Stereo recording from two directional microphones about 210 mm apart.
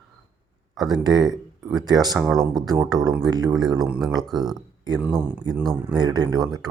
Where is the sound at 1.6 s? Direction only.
20° right (ahead or behind).